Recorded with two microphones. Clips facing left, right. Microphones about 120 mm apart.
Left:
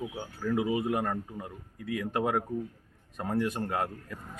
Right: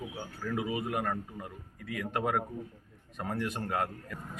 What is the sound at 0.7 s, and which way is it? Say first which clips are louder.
Speech: left 4 dB; 25° left (ahead or behind).